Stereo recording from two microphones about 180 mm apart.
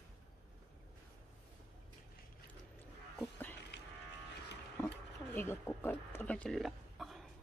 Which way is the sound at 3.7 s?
70° left (ahead or behind).